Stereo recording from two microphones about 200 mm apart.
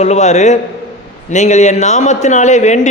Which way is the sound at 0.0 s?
35° left (ahead or behind).